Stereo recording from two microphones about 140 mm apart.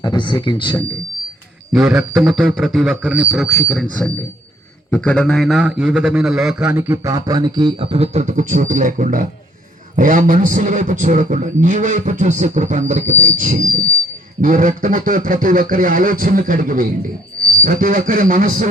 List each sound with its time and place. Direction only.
0.0 s speech: 35° left (ahead or behind)
1.7 s a man's voice: 5° right (ahead or behind)
4.9 s a man's voice: 10° left (ahead or behind)
6.7 s a man's voice: 20° right (ahead or behind); by 13.6 s 70° right (ahead or behind)
14.4 s a sound: 70° right (ahead or behind)